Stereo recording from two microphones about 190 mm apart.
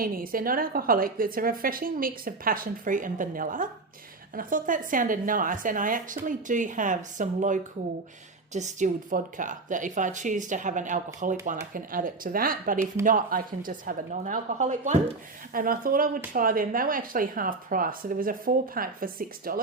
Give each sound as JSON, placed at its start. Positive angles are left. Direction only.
{"t": 0.0, "sound": "speech", "side_deg": -50}